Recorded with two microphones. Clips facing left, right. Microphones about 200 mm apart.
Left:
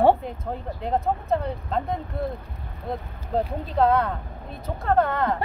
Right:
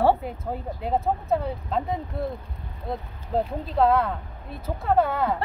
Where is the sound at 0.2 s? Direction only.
5° right (ahead or behind).